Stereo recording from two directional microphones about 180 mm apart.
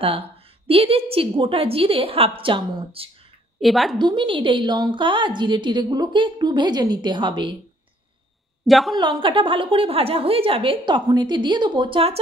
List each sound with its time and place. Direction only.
0.7 s a woman's voice: 30° right (ahead or behind)
3.6 s a woman's voice: centre (ahead or behind)
4.0 s a woman's voice: 25° right (ahead or behind)
8.6 s a woman's voice: centre (ahead or behind)
8.9 s a woman's voice: 25° right (ahead or behind)